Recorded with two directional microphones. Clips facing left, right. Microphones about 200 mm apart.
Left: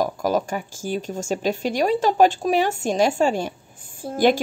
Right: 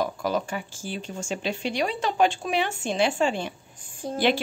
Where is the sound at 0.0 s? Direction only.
45° left (ahead or behind).